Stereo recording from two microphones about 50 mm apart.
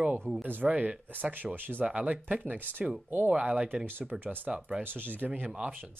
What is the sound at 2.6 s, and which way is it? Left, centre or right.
Speech, right.